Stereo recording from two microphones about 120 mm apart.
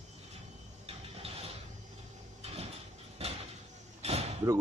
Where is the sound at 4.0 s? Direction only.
60° right (ahead or behind).